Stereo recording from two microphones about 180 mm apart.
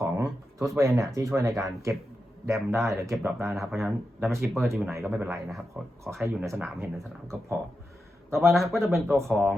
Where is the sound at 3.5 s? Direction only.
Centre (ahead or behind).